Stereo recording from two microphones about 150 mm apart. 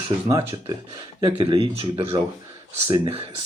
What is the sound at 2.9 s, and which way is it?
Speech, 25° right (ahead or behind).